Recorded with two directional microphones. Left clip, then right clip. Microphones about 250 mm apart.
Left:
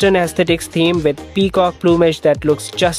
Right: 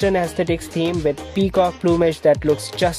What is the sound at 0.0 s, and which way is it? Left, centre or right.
Speech, centre.